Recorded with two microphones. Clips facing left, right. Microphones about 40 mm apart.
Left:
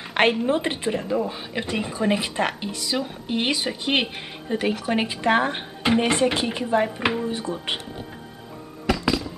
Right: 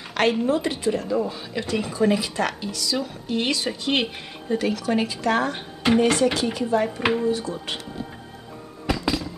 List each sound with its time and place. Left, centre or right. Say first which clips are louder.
0.1 s a sound: left 2 dB; left
0.5 s speech: right 1 dB; left
7.0 s speech: right 2 dB; centre
7.2 s speech: right 4 dB; left
8.9 s music: left 1 dB; centre